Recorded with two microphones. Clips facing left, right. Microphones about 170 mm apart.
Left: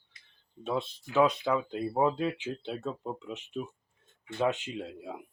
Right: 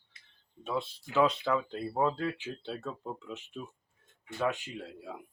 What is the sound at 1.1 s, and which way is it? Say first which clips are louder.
Speech: left 2 dB; 15° left (ahead or behind).